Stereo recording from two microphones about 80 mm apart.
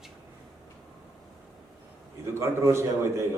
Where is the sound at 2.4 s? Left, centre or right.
Right.